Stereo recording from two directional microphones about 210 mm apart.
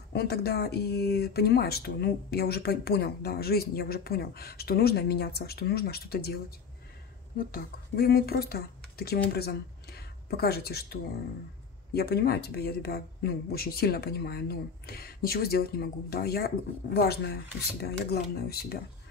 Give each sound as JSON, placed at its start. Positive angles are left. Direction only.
{"t": 0.1, "sound": "speech", "side_deg": 50}
{"t": 7.3, "sound": "speech", "side_deg": 45}